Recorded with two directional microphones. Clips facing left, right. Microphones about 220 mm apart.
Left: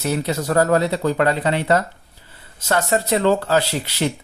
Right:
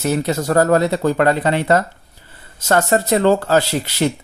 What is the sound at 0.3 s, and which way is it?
Speech, 45° right (ahead or behind).